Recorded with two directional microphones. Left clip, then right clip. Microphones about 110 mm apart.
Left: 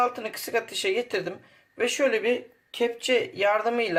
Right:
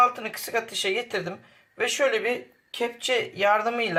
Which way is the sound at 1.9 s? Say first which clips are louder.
Even; 20° left (ahead or behind).